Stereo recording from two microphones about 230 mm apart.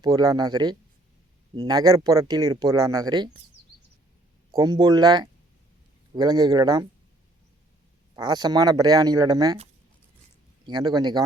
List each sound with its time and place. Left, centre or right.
0.0 s speech: centre
4.5 s speech: centre
8.1 s speech: centre
10.7 s speech: centre